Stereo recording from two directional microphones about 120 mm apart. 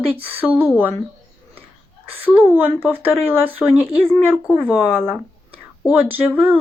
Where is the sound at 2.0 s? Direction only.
15° right (ahead or behind).